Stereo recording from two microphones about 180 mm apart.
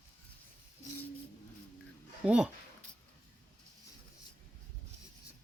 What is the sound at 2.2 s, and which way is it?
Speech, 5° right (ahead or behind).